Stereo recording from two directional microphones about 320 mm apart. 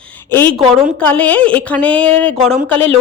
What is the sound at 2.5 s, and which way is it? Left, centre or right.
Speech, centre.